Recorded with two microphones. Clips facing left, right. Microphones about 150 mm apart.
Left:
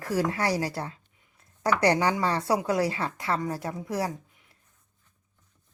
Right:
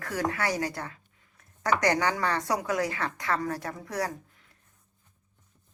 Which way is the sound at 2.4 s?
30° left (ahead or behind).